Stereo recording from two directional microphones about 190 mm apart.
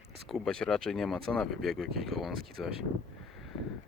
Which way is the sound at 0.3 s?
Centre (ahead or behind).